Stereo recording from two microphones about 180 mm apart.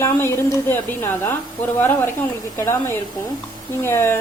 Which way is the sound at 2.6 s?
15° left (ahead or behind).